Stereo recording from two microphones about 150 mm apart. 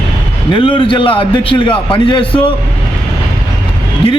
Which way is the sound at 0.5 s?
35° left (ahead or behind).